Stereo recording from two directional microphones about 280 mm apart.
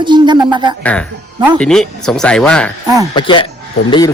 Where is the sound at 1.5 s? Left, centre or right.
Centre.